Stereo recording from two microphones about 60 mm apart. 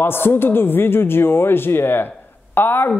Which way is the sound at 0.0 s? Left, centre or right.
Left.